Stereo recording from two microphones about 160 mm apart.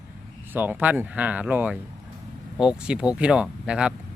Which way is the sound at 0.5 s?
10° right (ahead or behind).